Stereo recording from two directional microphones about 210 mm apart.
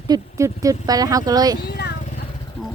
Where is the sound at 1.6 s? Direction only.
50° left (ahead or behind).